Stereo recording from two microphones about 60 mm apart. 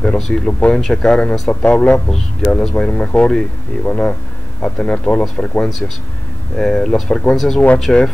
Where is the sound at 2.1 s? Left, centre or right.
Centre.